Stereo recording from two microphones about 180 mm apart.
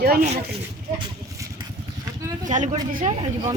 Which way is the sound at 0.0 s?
60° right (ahead or behind).